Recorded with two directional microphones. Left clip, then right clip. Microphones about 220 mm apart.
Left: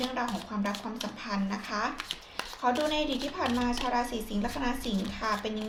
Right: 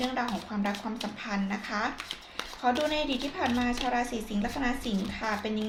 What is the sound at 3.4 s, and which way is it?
A woman's voice, 15° left (ahead or behind).